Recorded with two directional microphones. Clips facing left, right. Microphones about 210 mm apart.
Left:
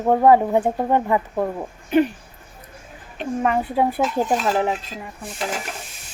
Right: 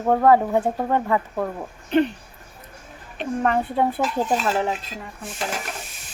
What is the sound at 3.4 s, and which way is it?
Speech, 5° left (ahead or behind).